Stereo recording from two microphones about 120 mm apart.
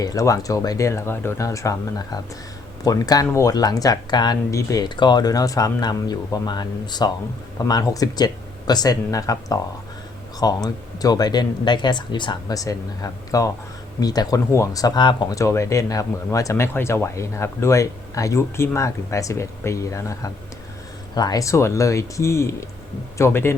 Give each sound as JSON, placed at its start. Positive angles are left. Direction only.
{"t": 0.0, "sound": "speech", "side_deg": 30}